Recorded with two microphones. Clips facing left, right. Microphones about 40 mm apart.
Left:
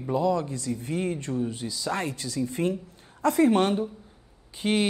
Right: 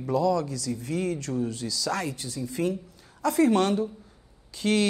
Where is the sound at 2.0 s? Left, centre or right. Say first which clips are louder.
Left 3 dB; left.